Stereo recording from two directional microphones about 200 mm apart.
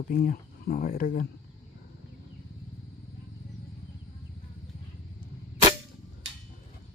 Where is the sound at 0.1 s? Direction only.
45° left (ahead or behind).